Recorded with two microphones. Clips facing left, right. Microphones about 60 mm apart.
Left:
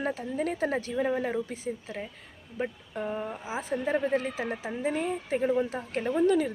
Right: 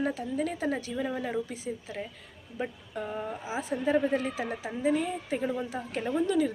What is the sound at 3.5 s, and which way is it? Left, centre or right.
Speech, left.